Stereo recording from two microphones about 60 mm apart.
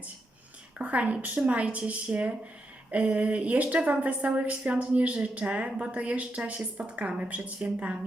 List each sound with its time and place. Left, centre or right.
0.8 s a woman's voice: right